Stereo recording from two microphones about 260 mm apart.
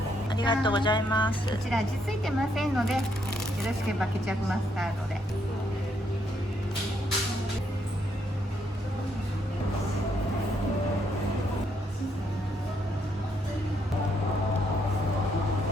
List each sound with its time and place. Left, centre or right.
0.3 s speech: centre
1.7 s speech: centre
4.0 s speech: centre